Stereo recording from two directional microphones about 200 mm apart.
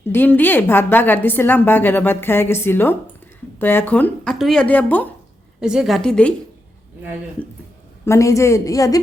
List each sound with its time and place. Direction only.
0.0 s a woman's voice: 10° left (ahead or behind)
5.5 s a woman's voice: 5° right (ahead or behind)
8.0 s a woman's voice: 15° left (ahead or behind)